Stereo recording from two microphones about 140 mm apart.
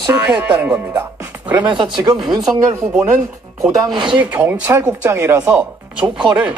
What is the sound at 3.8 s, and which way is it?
Speech, 35° right (ahead or behind).